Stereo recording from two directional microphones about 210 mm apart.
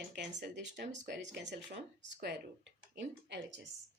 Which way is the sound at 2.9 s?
55° right (ahead or behind).